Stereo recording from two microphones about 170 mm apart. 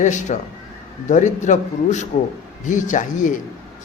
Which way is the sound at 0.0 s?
45° left (ahead or behind).